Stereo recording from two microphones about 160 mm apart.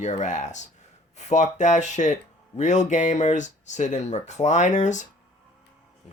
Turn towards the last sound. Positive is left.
turn(degrees=50)  # may be behind; listen again after turning